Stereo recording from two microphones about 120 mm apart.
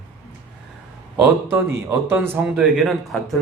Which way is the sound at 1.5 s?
20° right (ahead or behind).